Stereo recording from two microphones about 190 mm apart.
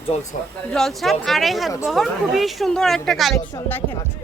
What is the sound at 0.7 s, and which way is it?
A woman's voice, centre (ahead or behind).